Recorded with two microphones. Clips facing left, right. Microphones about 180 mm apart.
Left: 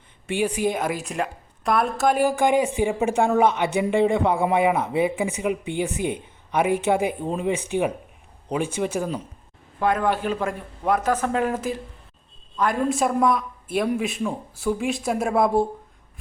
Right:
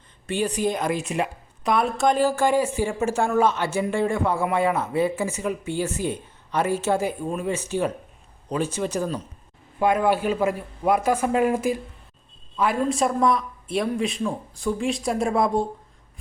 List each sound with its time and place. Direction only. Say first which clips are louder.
0.3 s a woman's voice: left 1 dB; 10° left (ahead or behind)
9.8 s a man's voice: right 2 dB; 10° right (ahead or behind)
12.5 s a man's voice: even; centre (ahead or behind)